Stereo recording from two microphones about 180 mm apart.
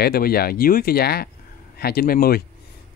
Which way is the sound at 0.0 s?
60° left (ahead or behind).